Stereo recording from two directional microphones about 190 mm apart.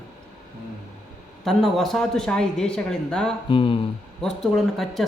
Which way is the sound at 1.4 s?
Centre (ahead or behind).